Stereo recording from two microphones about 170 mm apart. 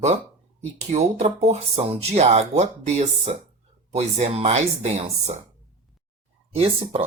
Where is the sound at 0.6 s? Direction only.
40° right (ahead or behind).